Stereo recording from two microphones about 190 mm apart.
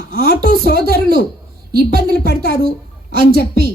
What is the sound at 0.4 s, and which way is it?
Speech, 55° left (ahead or behind).